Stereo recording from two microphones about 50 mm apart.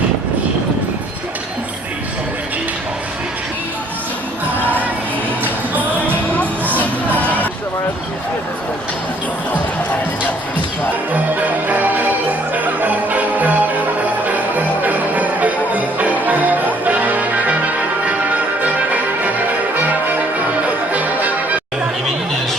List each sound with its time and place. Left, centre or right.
5.4 s music: right
6.7 s music: left
11.1 s jingle bell: right
12.8 s music: right